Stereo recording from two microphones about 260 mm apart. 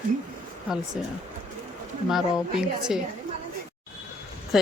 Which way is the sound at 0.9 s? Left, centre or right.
Centre.